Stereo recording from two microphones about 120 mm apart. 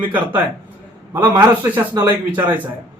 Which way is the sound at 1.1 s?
35° right (ahead or behind).